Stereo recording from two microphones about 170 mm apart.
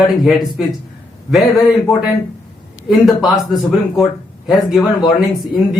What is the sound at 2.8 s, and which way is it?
Speech, centre (ahead or behind).